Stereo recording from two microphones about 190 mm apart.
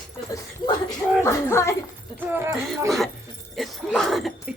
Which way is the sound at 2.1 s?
10° right (ahead or behind).